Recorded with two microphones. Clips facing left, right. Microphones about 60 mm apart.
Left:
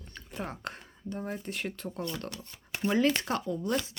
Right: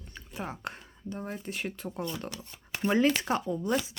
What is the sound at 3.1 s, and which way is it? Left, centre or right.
Speech, centre.